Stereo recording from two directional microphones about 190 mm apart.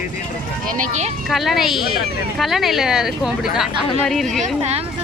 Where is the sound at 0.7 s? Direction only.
45° right (ahead or behind).